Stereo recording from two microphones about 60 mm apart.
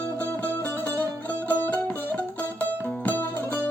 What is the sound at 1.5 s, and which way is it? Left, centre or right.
Music, left.